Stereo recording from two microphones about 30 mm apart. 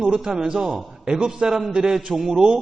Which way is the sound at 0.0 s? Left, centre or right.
Right.